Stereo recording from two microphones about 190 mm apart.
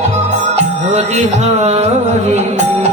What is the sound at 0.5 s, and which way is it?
Music, 35° right (ahead or behind).